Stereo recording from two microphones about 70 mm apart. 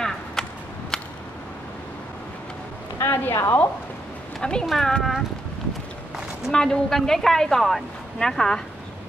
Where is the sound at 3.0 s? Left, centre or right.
Left.